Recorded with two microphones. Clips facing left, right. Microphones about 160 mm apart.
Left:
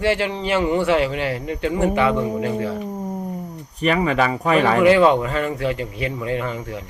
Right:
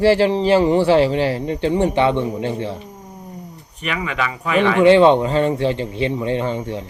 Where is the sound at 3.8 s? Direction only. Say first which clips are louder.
Left 5 dB; 40° left (ahead or behind).